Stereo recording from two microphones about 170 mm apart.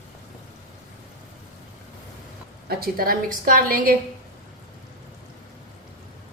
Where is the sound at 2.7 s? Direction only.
60° right (ahead or behind).